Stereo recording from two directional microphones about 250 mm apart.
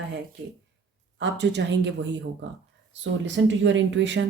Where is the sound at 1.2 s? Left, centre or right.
Right.